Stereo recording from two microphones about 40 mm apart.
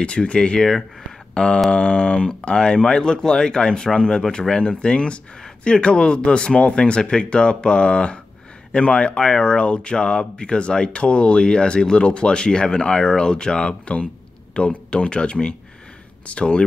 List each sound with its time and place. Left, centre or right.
0.0 s speech: left
1.3 s a sound: left
1.7 s speech: left